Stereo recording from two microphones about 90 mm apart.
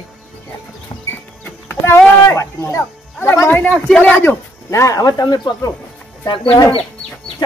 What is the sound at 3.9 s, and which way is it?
Speech, 10° left (ahead or behind).